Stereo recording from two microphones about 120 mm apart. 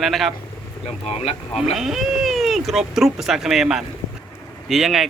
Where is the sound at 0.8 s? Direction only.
60° left (ahead or behind).